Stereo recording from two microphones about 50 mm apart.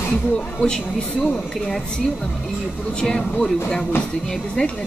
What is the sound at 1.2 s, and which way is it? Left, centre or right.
Speech, centre.